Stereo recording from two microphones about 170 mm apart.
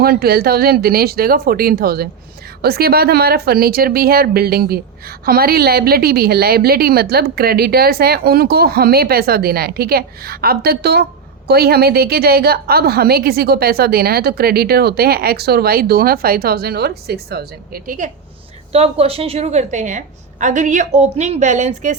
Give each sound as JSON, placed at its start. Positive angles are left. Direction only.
{"t": 0.0, "sound": "a woman's voice", "side_deg": -65}
{"t": 17.8, "sound": "a woman's voice", "side_deg": -50}
{"t": 18.7, "sound": "a woman's voice", "side_deg": -35}